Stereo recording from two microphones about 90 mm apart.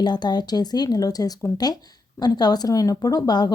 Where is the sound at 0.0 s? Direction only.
50° left (ahead or behind).